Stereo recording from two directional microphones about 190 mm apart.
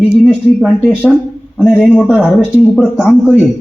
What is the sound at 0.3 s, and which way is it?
A man's voice, centre (ahead or behind).